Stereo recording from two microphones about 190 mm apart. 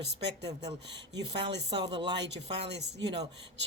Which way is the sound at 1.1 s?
25° right (ahead or behind).